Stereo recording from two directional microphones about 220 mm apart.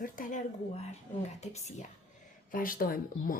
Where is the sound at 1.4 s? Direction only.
30° left (ahead or behind).